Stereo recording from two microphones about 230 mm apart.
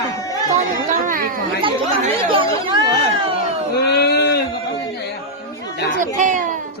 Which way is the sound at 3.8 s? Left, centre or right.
Left.